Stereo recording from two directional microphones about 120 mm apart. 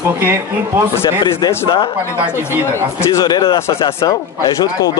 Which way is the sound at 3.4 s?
45° left (ahead or behind).